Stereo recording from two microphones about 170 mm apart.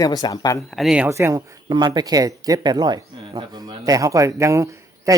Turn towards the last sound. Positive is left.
turn(degrees=-15)  # may be behind; listen again after turning